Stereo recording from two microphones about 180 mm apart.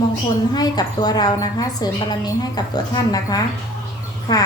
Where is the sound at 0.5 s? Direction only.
20° left (ahead or behind).